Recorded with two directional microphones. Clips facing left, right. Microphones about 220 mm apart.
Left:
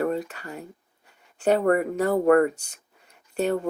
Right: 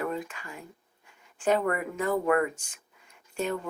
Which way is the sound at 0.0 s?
40° left (ahead or behind).